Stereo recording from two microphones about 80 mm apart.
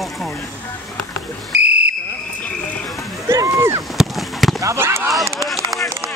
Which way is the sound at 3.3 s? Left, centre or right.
Right.